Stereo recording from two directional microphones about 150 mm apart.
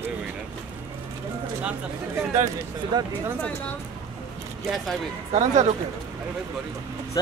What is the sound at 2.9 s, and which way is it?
Speech, 30° right (ahead or behind).